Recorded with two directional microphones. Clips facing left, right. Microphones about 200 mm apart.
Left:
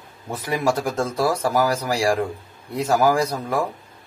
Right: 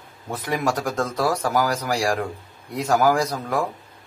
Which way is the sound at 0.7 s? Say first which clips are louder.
Left 2 dB; 30° left (ahead or behind).